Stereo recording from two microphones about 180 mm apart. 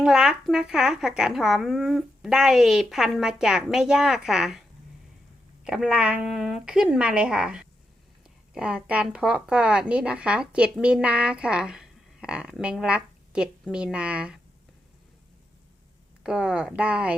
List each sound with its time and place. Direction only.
0.0 s a woman's voice: 5° right (ahead or behind)
5.6 s a woman's voice: 5° right (ahead or behind)
16.2 s a woman's voice: 5° right (ahead or behind)